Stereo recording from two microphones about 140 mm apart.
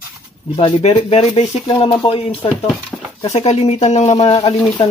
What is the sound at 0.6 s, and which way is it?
Speech, 45° left (ahead or behind).